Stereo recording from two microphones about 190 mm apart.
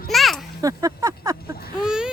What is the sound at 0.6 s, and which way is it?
Speech, 20° right (ahead or behind).